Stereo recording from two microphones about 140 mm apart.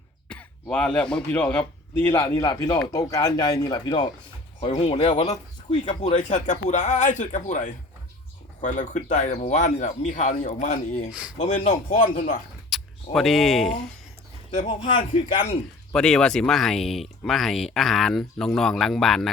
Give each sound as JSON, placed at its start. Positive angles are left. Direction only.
{"t": 0.3, "sound": "throat clearing", "side_deg": 5}
{"t": 1.1, "sound": "a man's voice", "side_deg": 10}
{"t": 12.7, "sound": "a sound", "side_deg": -5}
{"t": 13.1, "sound": "speech", "side_deg": 0}
{"t": 15.9, "sound": "speech", "side_deg": 5}